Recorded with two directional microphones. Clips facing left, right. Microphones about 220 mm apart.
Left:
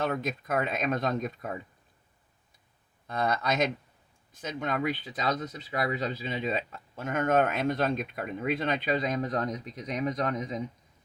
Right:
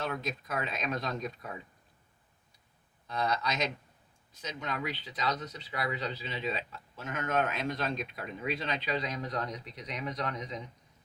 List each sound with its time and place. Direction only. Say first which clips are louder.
0.0 s speech: left 5 dB; 50° left (ahead or behind)
3.1 s speech: left 4 dB; 50° left (ahead or behind)